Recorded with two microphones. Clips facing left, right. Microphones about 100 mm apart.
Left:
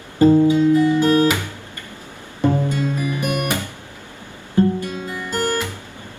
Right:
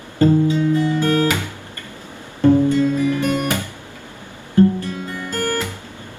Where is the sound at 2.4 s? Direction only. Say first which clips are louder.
Right 6 dB; 15° left (ahead or behind).